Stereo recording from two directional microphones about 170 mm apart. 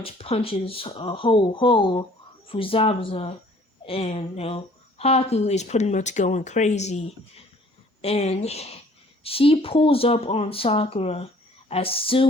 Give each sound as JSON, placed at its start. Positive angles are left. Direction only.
{"t": 0.0, "sound": "speech", "side_deg": 35}